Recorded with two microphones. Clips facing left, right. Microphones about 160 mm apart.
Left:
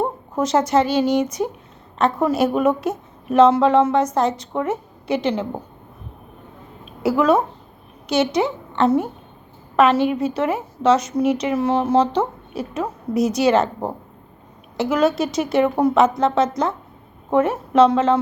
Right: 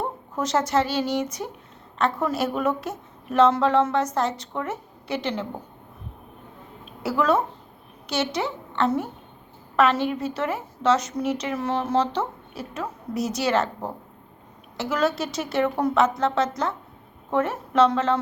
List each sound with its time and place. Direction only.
0.3 s a woman's voice: 15° left (ahead or behind)
6.8 s a woman's voice: 15° left (ahead or behind)
14.8 s a woman's voice: 15° left (ahead or behind)